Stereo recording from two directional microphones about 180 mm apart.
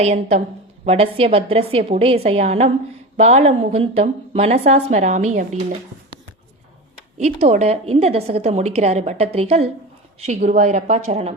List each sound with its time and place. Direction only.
0.0 s a woman's voice: 40° right (ahead or behind)
7.2 s a woman's voice: 40° right (ahead or behind)